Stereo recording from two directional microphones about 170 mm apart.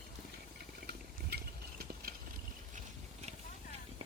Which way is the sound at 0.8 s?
70° right (ahead or behind).